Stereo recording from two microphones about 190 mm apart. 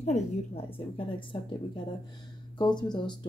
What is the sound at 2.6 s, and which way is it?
Speech, 25° left (ahead or behind).